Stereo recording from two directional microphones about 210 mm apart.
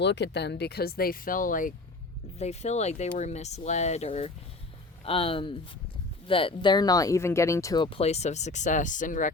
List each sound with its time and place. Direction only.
0.0 s speech: 55° left (ahead or behind); by 9.3 s 40° left (ahead or behind)